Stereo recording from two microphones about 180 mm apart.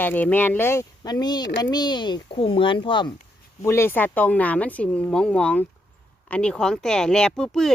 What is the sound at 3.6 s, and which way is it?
Speech, 15° left (ahead or behind).